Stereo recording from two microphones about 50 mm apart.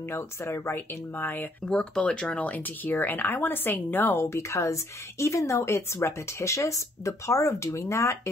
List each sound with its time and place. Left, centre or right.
0.1 s speech: left
1.7 s speech: centre
2.3 s speech: left
4.3 s speech: left